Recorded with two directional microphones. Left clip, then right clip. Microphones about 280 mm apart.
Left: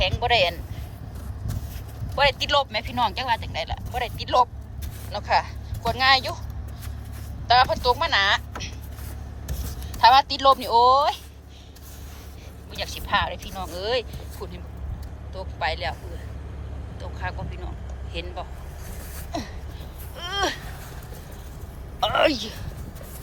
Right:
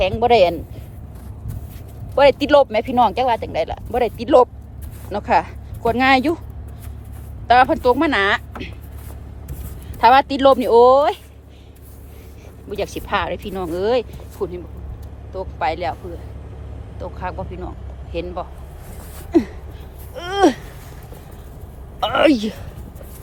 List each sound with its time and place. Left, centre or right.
0.0 s speech: centre
2.1 s speech: centre
7.4 s speech: right
10.0 s speech: right
12.7 s speech: centre
15.5 s speech: centre
18.1 s speech: centre
19.3 s a sound: right
22.0 s speech: right